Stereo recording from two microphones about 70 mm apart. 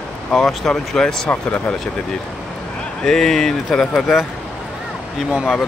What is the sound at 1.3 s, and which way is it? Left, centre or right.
Speech, left.